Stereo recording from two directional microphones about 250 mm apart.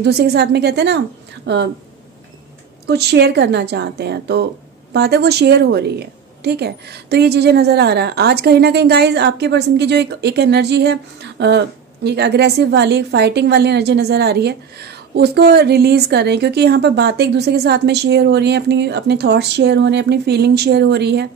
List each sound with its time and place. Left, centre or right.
0.0 s a woman's voice: right
2.9 s a woman's voice: right